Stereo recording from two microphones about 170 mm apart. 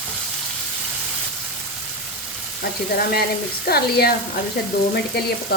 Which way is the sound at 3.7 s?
65° left (ahead or behind).